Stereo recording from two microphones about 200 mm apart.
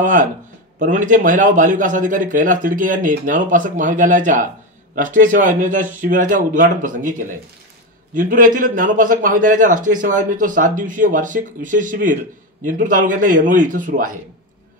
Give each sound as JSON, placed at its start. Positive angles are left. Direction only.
{"t": 0.0, "sound": "a man's voice", "side_deg": -40}